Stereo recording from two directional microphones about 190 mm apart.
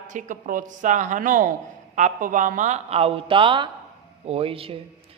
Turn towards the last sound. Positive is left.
turn(degrees=-30)  # may be behind; listen again after turning